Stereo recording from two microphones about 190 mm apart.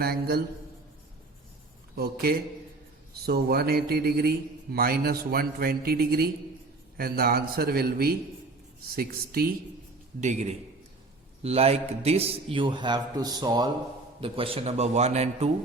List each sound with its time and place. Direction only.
0.0 s a man's voice: 55° right (ahead or behind)
2.0 s a man's voice: 55° right (ahead or behind)
10.2 s a man's voice: 40° right (ahead or behind)